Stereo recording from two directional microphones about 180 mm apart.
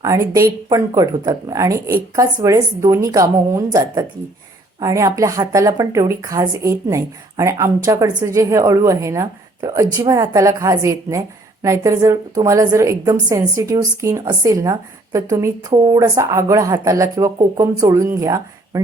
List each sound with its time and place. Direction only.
0.0 s a woman's voice: 20° right (ahead or behind)